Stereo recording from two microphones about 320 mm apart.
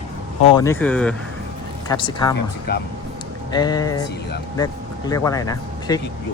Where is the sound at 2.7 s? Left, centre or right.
Left.